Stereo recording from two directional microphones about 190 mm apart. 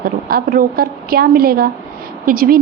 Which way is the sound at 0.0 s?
50° right (ahead or behind).